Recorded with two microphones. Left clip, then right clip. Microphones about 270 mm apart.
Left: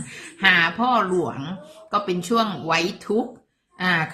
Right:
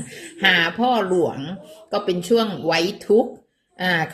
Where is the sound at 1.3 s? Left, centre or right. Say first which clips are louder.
Right 2 dB; centre.